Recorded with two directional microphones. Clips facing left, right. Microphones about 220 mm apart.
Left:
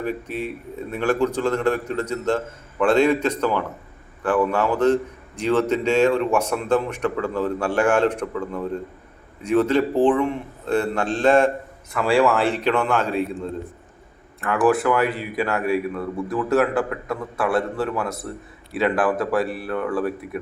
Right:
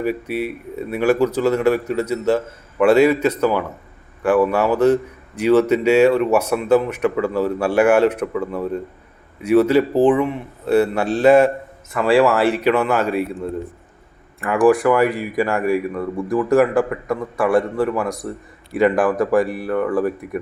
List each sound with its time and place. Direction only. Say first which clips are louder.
0.0 s a man's voice: right 5 dB; 10° right (ahead or behind)
14.8 s a man's voice: right 5 dB; 10° right (ahead or behind)
19.3 s a man's voice: right 5 dB; 15° right (ahead or behind)